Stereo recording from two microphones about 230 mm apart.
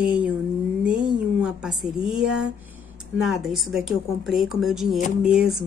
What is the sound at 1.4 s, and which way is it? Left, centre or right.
A woman's voice, centre.